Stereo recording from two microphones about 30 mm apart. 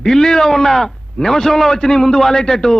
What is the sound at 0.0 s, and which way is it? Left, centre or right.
A man's voice, centre.